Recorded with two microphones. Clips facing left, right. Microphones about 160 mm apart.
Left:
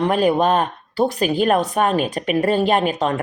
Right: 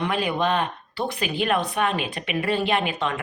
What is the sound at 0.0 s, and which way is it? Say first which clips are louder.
A woman's voice: left 7 dB; 40° left (ahead or behind).